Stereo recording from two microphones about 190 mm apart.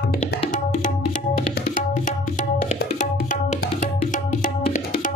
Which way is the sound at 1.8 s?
40° left (ahead or behind).